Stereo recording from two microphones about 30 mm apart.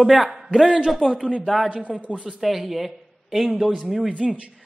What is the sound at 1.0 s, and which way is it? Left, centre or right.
Speech, right.